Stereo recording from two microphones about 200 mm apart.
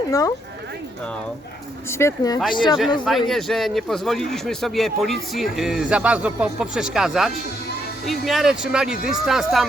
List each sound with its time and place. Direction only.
0.1 s speech: 15° left (ahead or behind)
1.9 s speech: 15° left (ahead or behind)
3.2 s speech: centre (ahead or behind)